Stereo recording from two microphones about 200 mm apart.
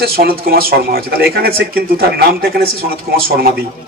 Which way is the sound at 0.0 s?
50° right (ahead or behind).